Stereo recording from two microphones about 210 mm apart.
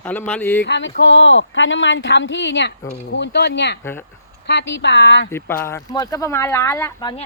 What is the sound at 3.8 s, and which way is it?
Speech, 10° left (ahead or behind).